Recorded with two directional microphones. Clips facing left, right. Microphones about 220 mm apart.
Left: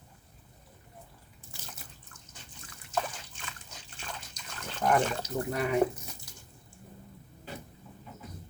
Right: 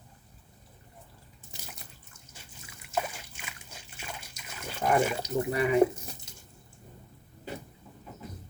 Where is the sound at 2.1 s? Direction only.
10° right (ahead or behind).